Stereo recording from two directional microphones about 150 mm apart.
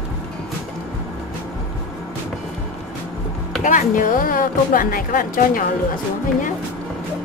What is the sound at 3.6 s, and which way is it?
Speech, 60° left (ahead or behind).